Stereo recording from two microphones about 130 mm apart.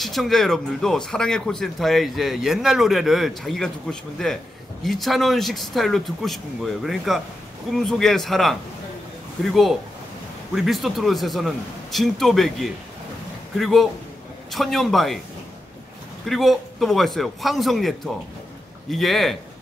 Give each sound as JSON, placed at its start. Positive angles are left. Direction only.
{"t": 0.0, "sound": "speech", "side_deg": 0}
{"t": 16.3, "sound": "speech", "side_deg": 0}